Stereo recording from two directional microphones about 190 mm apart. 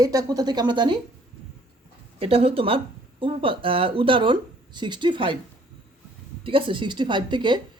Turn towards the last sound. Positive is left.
turn(degrees=-25)  # may be behind; listen again after turning